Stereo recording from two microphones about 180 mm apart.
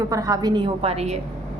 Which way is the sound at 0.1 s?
20° right (ahead or behind).